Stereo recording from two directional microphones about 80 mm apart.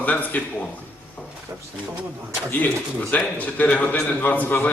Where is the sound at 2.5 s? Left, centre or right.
Centre.